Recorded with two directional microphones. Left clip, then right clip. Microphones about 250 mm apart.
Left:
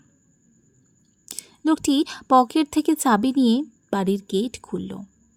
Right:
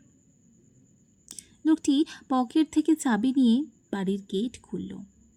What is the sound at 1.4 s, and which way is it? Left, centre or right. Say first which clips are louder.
A woman's voice: left 3 dB; left.